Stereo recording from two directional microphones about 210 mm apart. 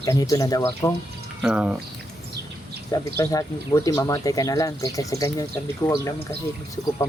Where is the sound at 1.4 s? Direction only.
5° right (ahead or behind).